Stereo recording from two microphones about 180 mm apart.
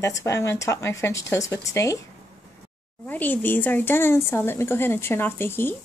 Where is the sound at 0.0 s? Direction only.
15° left (ahead or behind).